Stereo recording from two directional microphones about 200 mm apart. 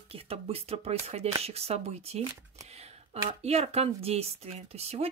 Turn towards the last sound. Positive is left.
turn(degrees=-30)  # may be behind; listen again after turning